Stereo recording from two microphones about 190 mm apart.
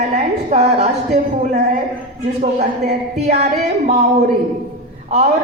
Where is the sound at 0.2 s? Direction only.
35° right (ahead or behind).